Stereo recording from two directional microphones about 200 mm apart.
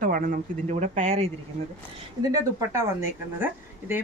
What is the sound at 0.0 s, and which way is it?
Speech, 45° right (ahead or behind).